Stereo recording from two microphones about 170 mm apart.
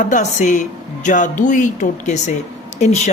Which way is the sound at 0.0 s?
45° left (ahead or behind).